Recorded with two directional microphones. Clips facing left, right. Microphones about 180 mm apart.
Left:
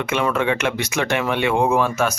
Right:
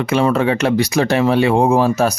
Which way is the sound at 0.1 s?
35° right (ahead or behind).